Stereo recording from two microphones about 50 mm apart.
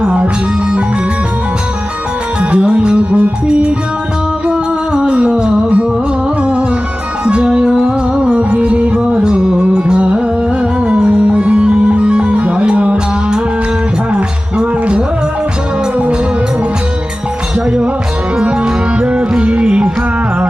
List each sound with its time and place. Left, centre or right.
0.0 s music: right
2.4 s music: right
5.1 s music: right
14.6 s music: right
18.3 s music: right